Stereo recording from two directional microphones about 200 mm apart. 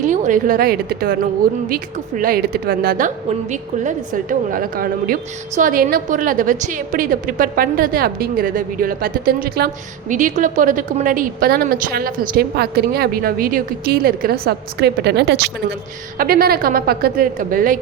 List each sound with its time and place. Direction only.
0.0 s a woman's voice: 40° right (ahead or behind)